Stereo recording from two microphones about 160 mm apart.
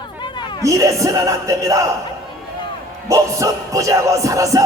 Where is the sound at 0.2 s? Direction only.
30° left (ahead or behind).